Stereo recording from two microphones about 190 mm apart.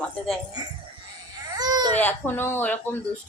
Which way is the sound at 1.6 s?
20° right (ahead or behind).